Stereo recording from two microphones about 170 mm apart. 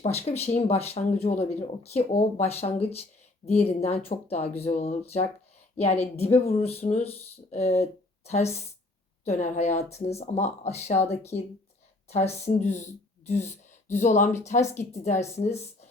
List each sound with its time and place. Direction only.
0.0 s speech: 40° left (ahead or behind)
11.3 s speech: 10° left (ahead or behind)
12.0 s speech: 40° left (ahead or behind)